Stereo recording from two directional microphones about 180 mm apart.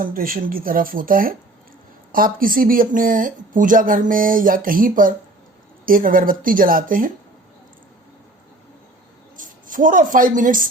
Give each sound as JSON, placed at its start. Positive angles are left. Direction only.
{"t": 0.0, "sound": "speech", "side_deg": -50}
{"t": 9.3, "sound": "speech", "side_deg": -45}